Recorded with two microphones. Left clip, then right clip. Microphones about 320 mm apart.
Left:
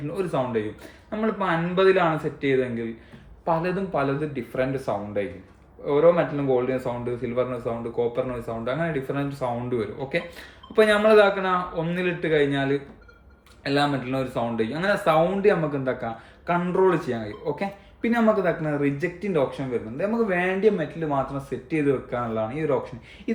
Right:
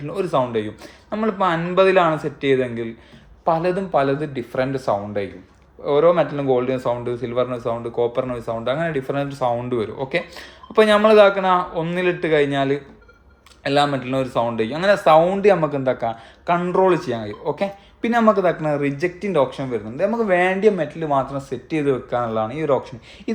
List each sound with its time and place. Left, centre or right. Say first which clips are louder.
0.1 s speech: right 6 dB; centre